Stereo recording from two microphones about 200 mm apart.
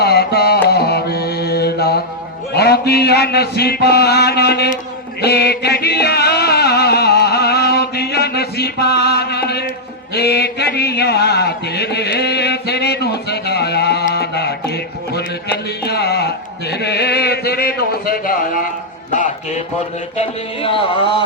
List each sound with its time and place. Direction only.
0.0 s music: 55° left (ahead or behind)
0.7 s mantra: 55° left (ahead or behind)
5.2 s music: 55° left (ahead or behind)
10.2 s a sound: 55° left (ahead or behind); by 19.6 s 35° left (ahead or behind)
20.1 s music: 30° left (ahead or behind)